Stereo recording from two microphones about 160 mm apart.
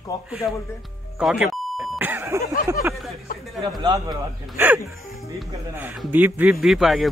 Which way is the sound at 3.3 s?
60° left (ahead or behind).